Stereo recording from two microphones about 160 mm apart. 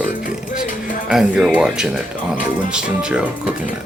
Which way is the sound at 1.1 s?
5° right (ahead or behind).